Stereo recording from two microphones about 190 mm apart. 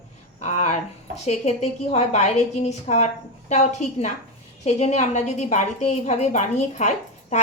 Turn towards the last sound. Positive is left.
turn(degrees=40)  # may be behind; listen again after turning